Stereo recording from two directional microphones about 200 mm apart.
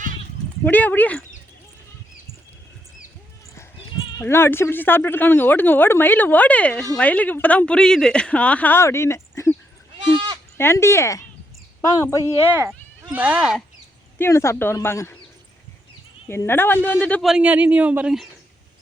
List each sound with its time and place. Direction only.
0.6 s speech: 10° left (ahead or behind)
4.2 s speech: 10° left (ahead or behind)
10.6 s speech: 15° left (ahead or behind)
12.2 s speech: 15° right (ahead or behind)
14.2 s speech: 15° left (ahead or behind)
16.3 s a man's voice: 10° left (ahead or behind); by 18.3 s 5° right (ahead or behind)